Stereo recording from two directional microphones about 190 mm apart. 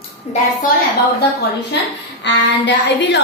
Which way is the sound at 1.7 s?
65° left (ahead or behind).